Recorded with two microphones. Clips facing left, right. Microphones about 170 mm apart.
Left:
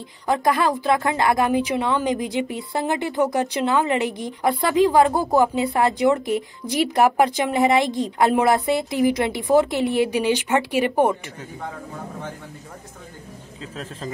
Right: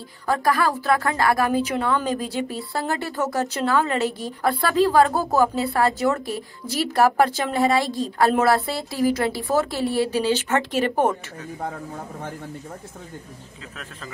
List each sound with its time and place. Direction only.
0.3 s a woman's voice: 20° left (ahead or behind)
11.7 s a man's voice: 45° right (ahead or behind)